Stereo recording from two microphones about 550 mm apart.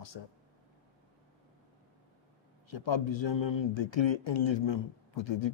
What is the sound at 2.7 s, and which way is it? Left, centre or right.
A man's voice, left.